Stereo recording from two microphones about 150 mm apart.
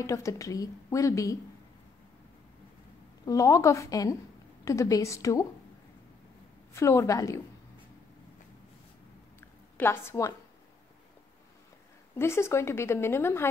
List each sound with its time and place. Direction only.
0.0 s a woman's voice: 20° left (ahead or behind)
3.3 s a woman's voice: 20° left (ahead or behind)
6.7 s a woman's voice: 20° left (ahead or behind)
9.8 s speech: 15° left (ahead or behind)
12.2 s speech: 15° left (ahead or behind)